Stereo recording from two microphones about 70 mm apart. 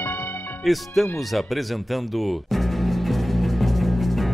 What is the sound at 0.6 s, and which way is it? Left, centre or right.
Music, centre.